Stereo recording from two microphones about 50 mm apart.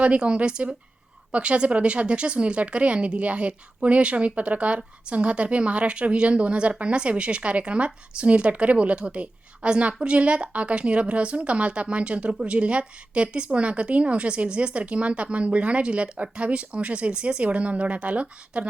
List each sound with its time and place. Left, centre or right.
0.0 s a woman's voice: right